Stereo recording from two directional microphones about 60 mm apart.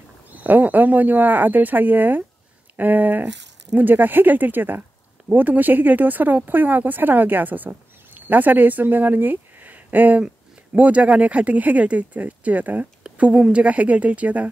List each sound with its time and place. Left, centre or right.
0.3 s speech: right
10.2 s speech: centre